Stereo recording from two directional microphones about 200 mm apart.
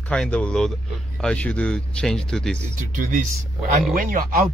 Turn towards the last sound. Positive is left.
turn(degrees=-45)  # may be behind; listen again after turning